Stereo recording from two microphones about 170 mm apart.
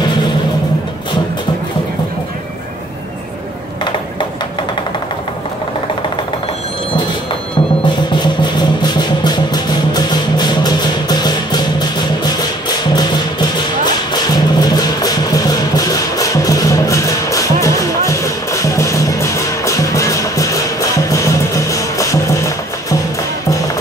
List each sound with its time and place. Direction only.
7.8 s music: 30° left (ahead or behind)